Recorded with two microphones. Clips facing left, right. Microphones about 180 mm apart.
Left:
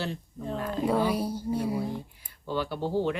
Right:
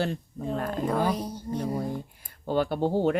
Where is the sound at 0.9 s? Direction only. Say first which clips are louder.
Left 2 dB; 10° left (ahead or behind).